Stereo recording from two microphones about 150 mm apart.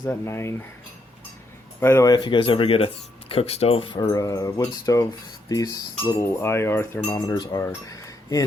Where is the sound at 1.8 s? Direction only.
15° left (ahead or behind).